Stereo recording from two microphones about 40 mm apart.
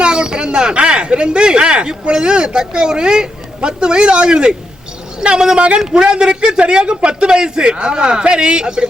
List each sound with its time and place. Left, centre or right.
0.0 s a man's voice: right